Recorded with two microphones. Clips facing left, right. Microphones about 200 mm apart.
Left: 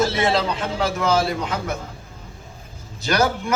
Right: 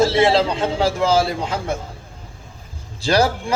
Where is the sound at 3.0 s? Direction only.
30° right (ahead or behind).